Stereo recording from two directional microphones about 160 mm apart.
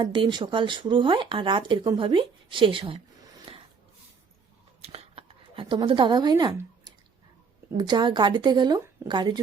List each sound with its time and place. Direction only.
0.0 s speech: 30° right (ahead or behind)
3.5 s snort: 35° right (ahead or behind)
4.8 s a sound: 40° right (ahead or behind)
7.8 s speech: 30° right (ahead or behind)